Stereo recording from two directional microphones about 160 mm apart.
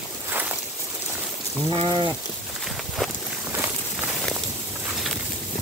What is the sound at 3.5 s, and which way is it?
Walk, 10° right (ahead or behind).